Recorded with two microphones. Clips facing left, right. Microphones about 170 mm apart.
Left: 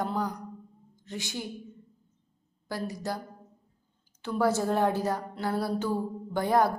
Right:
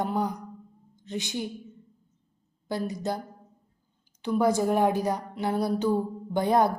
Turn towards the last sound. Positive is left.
turn(degrees=-20)  # may be behind; listen again after turning